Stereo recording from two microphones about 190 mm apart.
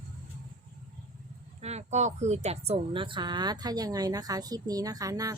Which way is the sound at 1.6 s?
35° right (ahead or behind).